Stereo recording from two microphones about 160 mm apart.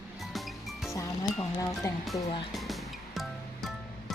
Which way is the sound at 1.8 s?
20° left (ahead or behind).